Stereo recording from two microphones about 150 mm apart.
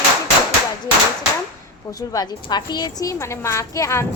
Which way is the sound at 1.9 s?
25° left (ahead or behind).